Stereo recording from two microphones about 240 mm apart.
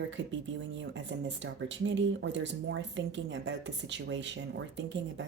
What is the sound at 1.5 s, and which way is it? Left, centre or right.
Speech, right.